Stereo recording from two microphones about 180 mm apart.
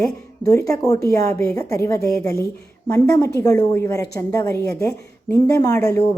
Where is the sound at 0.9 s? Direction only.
15° left (ahead or behind).